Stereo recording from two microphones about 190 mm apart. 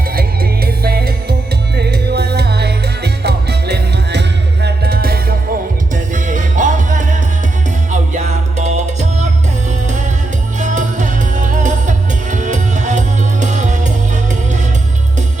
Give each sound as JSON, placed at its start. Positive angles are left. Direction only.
{"t": 0.2, "sound": "music", "side_deg": -55}
{"t": 5.9, "sound": "music", "side_deg": -40}
{"t": 10.6, "sound": "music", "side_deg": -40}